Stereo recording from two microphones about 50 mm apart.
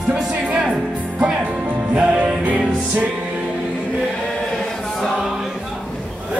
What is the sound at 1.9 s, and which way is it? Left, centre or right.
Music, right.